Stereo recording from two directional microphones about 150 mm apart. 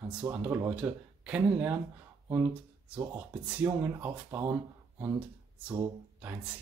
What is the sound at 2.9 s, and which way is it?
Speech, 15° right (ahead or behind).